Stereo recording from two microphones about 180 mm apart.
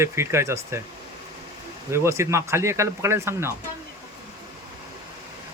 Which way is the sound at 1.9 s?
15° right (ahead or behind).